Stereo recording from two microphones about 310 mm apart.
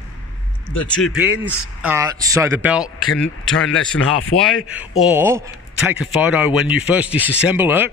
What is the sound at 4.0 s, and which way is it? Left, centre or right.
Speech, left.